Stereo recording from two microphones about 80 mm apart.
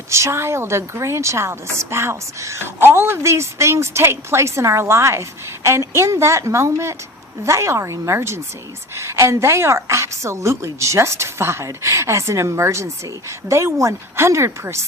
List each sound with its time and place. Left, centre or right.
0.1 s a woman's voice: right